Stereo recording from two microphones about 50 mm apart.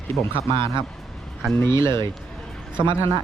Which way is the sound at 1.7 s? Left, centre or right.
Left.